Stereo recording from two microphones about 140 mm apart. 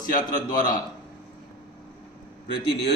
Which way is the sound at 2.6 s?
40° left (ahead or behind).